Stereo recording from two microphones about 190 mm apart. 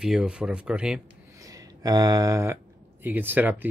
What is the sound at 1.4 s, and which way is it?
Speech, 20° right (ahead or behind).